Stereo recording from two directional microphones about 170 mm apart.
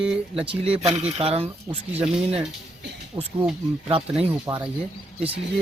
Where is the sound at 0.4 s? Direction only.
35° right (ahead or behind).